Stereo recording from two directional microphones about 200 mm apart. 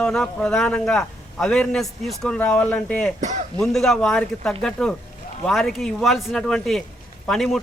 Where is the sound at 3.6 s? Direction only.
Centre (ahead or behind).